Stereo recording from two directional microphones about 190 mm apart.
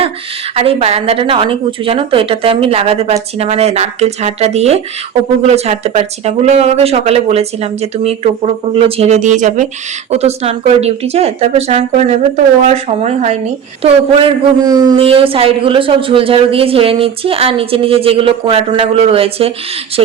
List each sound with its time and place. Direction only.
0.5 s a woman's voice: 30° right (ahead or behind)